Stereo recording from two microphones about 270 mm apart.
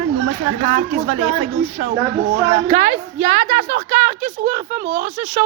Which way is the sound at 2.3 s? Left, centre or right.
Right.